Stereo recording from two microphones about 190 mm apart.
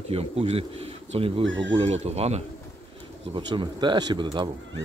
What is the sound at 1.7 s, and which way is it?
Speech, 35° right (ahead or behind).